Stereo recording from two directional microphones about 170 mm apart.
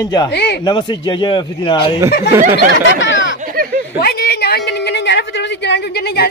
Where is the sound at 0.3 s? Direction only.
80° left.